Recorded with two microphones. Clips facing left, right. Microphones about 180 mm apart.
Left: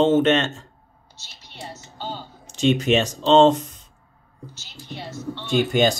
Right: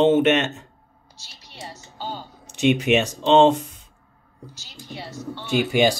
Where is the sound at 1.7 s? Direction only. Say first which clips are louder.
Even; 10° right (ahead or behind).